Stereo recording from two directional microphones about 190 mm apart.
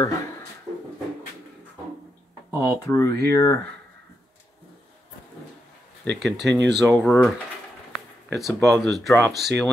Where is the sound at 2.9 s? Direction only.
15° left (ahead or behind).